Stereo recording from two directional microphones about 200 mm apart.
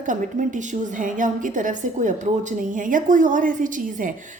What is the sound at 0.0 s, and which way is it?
A woman's voice, 40° right (ahead or behind).